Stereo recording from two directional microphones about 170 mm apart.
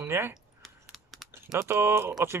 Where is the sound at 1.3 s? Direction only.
15° right (ahead or behind).